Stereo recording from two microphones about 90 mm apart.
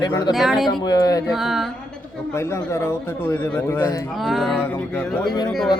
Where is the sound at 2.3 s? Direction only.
30° left (ahead or behind).